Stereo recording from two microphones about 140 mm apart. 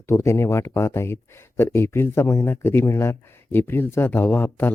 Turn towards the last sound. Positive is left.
turn(degrees=15)  # may be behind; listen again after turning